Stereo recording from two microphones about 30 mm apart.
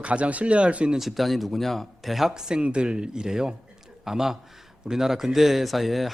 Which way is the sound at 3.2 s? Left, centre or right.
Centre.